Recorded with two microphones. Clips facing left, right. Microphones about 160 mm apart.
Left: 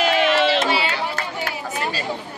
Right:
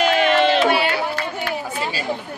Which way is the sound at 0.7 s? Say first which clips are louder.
Right 4 dB; 55° right (ahead or behind).